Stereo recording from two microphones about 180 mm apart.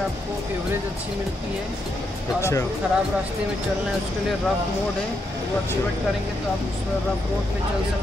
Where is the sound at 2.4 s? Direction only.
15° left (ahead or behind).